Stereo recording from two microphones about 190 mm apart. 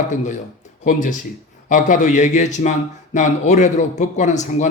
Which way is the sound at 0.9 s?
40° left (ahead or behind).